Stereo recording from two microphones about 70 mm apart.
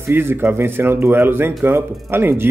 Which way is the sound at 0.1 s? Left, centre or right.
Right.